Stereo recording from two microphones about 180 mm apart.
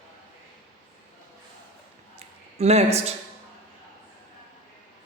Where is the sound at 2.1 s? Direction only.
35° right (ahead or behind).